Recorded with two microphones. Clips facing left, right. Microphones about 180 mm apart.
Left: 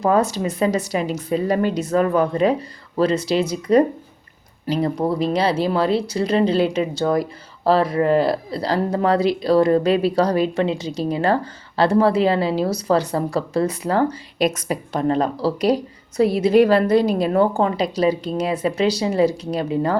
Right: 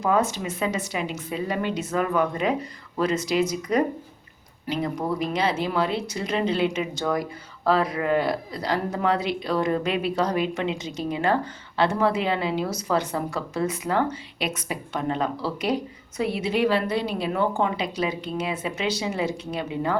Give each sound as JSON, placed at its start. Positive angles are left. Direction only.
{"t": 0.0, "sound": "a woman's voice", "side_deg": 35}